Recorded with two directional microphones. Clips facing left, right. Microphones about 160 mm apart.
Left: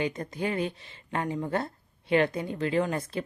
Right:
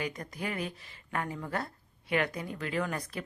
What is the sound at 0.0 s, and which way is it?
Speech, 25° left (ahead or behind).